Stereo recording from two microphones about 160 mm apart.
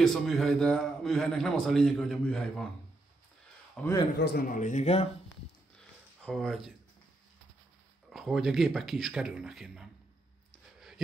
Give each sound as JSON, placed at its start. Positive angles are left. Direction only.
{"t": 0.0, "sound": "a man's voice", "side_deg": 0}
{"t": 3.8, "sound": "a man's voice", "side_deg": 5}
{"t": 4.2, "sound": "speech", "side_deg": 80}
{"t": 6.2, "sound": "a man's voice", "side_deg": 0}
{"t": 8.1, "sound": "a man's voice", "side_deg": 0}
{"t": 10.5, "sound": "a sound", "side_deg": 0}